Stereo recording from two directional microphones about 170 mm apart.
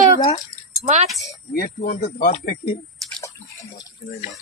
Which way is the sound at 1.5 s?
60° left (ahead or behind).